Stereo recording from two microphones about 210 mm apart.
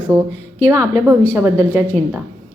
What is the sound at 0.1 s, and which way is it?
A woman's voice, 15° right (ahead or behind).